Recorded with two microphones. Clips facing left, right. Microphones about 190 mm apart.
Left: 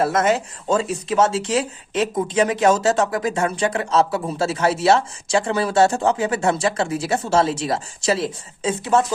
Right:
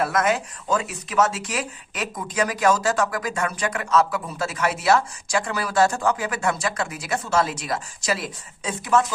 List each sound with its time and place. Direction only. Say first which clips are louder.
0.0 s speech: left 3 dB; 25° left (ahead or behind)